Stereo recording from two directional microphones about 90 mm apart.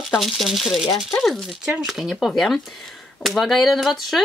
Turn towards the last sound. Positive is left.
turn(degrees=0)  # may be behind; listen again after turning